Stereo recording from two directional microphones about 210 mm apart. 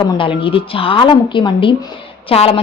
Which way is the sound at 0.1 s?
25° left (ahead or behind).